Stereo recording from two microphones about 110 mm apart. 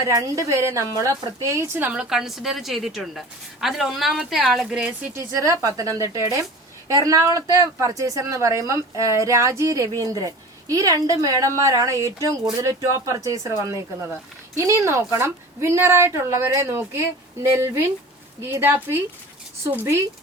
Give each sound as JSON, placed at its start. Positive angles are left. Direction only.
{"t": 0.0, "sound": "a woman's voice", "side_deg": -30}
{"t": 5.1, "sound": "a woman's voice", "side_deg": -30}